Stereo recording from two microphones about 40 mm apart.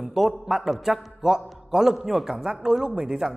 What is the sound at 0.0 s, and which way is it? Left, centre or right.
A woman's voice, centre.